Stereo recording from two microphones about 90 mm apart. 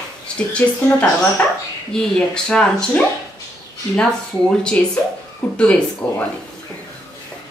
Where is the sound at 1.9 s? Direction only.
10° left (ahead or behind).